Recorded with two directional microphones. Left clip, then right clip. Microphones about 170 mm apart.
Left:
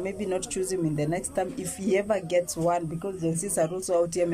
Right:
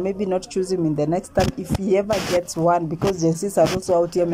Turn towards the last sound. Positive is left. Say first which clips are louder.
# right 6 dB
turn(degrees=-5)  # may be behind; listen again after turning